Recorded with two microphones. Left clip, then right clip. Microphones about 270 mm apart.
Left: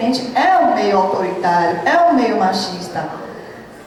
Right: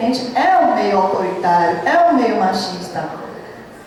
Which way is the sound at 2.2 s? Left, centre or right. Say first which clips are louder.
Even; centre.